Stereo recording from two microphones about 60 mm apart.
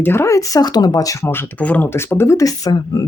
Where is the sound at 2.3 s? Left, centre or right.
Left.